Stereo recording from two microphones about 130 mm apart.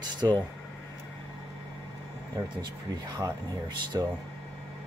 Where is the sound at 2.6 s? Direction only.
30° right (ahead or behind).